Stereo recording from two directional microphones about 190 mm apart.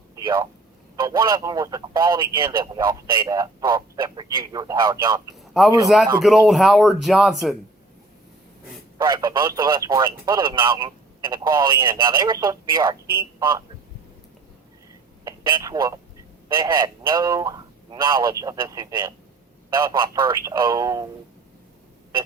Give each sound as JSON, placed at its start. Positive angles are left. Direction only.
{"t": 0.2, "sound": "speech", "side_deg": -25}
{"t": 5.5, "sound": "speech", "side_deg": 0}
{"t": 9.0, "sound": "speech", "side_deg": -20}
{"t": 15.2, "sound": "speech", "side_deg": -20}